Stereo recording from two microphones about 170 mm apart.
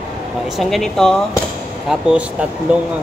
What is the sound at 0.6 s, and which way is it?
Speech, centre (ahead or behind).